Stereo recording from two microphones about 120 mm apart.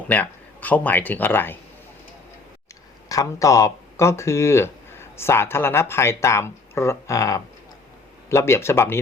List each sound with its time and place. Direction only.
0.1 s speech: 15° left (ahead or behind)
3.1 s speech: 25° left (ahead or behind)